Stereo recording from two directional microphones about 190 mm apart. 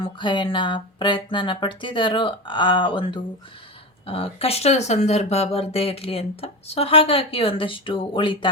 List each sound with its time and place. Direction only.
0.0 s speech: 25° left (ahead or behind)